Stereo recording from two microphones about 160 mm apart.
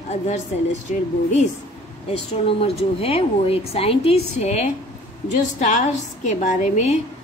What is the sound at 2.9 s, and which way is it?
A woman's voice, 40° left (ahead or behind).